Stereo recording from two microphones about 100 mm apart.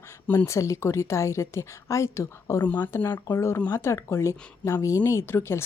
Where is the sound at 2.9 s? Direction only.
30° left (ahead or behind).